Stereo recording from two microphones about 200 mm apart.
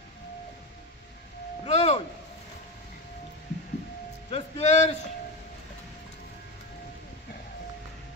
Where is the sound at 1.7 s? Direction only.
30° left (ahead or behind).